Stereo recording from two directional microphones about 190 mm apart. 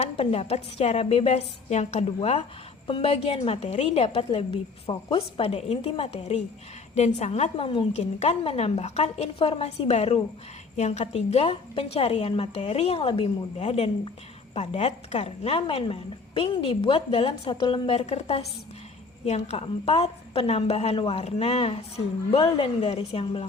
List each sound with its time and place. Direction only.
0.0 s a woman's voice: 35° left (ahead or behind)